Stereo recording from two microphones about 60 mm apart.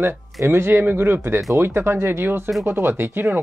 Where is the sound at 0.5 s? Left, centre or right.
Right.